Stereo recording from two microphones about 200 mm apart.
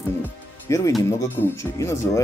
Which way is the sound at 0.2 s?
15° left (ahead or behind).